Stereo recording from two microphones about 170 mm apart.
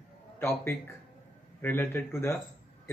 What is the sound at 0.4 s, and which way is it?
Speech, 15° left (ahead or behind).